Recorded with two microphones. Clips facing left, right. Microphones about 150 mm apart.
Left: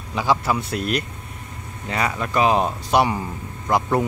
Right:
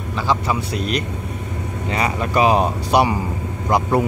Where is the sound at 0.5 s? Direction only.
Centre (ahead or behind).